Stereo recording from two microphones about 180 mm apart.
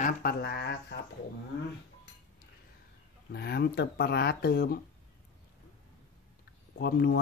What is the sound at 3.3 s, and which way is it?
Speech, 60° left (ahead or behind).